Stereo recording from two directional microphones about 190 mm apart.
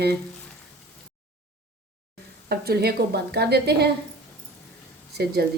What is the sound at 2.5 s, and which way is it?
A woman's voice, 55° right (ahead or behind).